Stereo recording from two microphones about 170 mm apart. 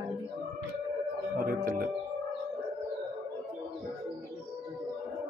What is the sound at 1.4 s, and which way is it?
Speech, 55° right (ahead or behind).